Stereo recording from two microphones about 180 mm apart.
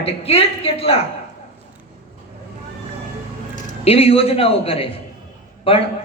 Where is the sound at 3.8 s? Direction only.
35° left (ahead or behind).